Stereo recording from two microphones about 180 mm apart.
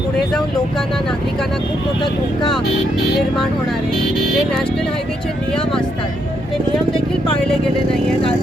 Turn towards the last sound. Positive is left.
turn(degrees=5)  # may be behind; listen again after turning